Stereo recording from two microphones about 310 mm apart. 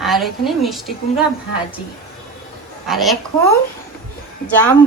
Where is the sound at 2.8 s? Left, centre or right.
Centre.